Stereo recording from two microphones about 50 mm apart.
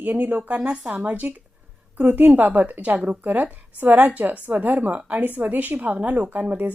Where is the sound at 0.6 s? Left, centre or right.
Centre.